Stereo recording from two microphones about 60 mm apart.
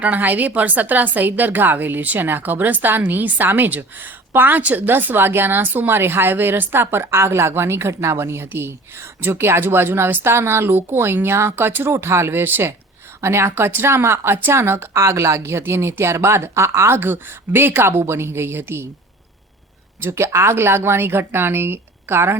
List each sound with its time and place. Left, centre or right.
0.0 s a woman's voice: right
13.2 s speech: right
14.9 s speech: right
20.0 s speech: right